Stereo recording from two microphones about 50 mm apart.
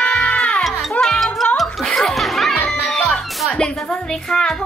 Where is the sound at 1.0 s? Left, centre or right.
Centre.